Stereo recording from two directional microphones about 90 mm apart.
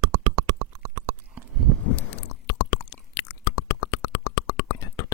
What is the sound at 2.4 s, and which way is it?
Chewing, 40° left (ahead or behind).